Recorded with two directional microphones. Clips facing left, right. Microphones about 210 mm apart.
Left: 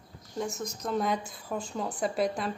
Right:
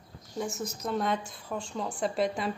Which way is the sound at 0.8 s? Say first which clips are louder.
Left 1 dB; centre (ahead or behind).